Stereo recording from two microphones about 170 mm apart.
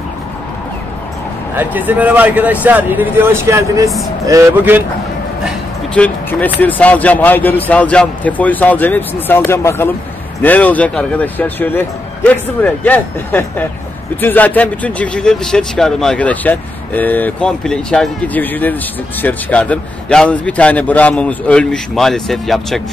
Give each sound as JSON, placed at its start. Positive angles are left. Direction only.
{"t": 1.6, "sound": "speech", "side_deg": -10}
{"t": 5.9, "sound": "speech", "side_deg": 10}